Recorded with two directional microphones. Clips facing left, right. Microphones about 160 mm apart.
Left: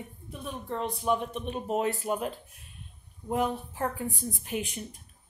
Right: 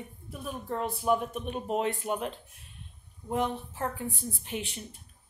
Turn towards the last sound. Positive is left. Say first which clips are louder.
# left 3 dB
turn(degrees=45)  # may be behind; listen again after turning